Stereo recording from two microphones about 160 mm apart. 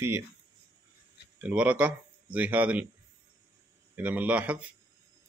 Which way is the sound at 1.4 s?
10° right (ahead or behind).